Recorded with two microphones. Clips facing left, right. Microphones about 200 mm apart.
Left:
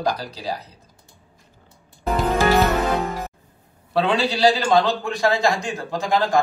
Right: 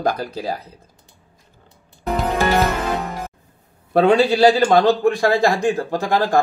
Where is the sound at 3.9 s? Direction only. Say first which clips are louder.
Right 7 dB; 50° right (ahead or behind).